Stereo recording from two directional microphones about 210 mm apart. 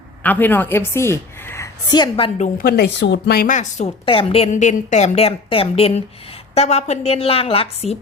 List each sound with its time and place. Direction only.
0.2 s a woman's voice: 10° left (ahead or behind); by 2.5 s 25° left (ahead or behind)
2.6 s a woman's voice: 45° left (ahead or behind); by 7.9 s 30° left (ahead or behind)